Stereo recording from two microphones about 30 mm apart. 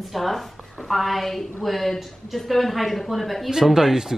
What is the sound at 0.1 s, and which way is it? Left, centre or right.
Speech, centre.